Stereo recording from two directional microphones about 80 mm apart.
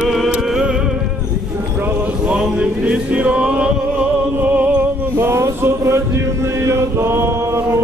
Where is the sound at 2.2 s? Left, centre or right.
Centre.